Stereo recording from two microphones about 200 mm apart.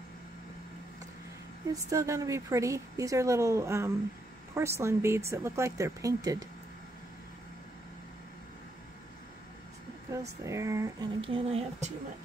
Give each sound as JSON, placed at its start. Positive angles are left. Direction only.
{"t": 1.7, "sound": "a woman's voice", "side_deg": -15}
{"t": 10.1, "sound": "a woman's voice", "side_deg": -15}
{"t": 11.1, "sound": "speech", "side_deg": -30}